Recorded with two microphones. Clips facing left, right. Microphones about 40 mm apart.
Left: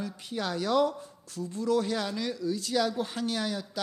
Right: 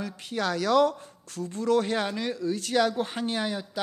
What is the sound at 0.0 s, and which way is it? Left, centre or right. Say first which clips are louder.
Speech: right 4 dB; right.